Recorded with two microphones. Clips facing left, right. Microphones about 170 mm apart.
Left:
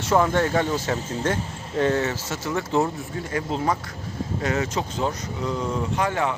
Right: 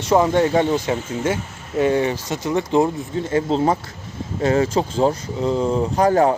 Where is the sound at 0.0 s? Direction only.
15° right (ahead or behind).